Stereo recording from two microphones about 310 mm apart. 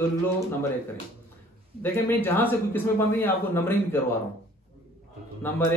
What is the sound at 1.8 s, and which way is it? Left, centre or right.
A man's voice, centre.